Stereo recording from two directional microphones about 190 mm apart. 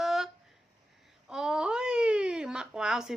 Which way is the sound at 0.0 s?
Centre (ahead or behind).